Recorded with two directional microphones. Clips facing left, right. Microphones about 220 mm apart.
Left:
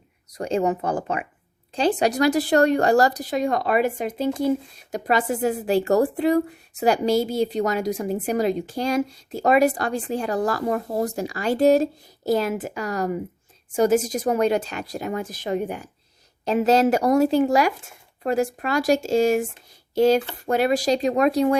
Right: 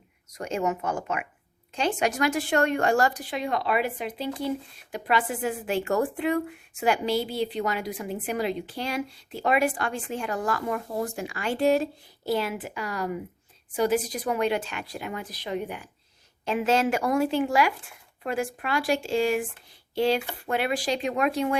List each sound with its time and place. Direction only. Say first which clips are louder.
0.3 s speech: left 5 dB; 35° left (ahead or behind)